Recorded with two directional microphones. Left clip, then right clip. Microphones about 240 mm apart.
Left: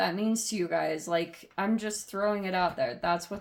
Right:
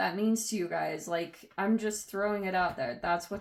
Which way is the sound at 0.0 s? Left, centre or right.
Left.